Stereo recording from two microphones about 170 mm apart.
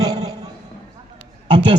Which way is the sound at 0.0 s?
25° right (ahead or behind).